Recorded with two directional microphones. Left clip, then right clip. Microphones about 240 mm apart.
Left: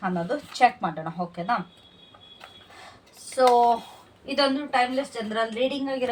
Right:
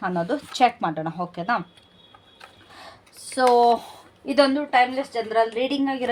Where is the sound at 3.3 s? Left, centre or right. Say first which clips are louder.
Right 2 dB; right.